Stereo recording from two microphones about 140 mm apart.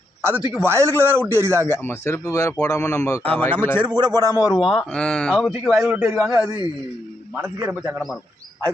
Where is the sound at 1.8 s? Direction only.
15° left (ahead or behind).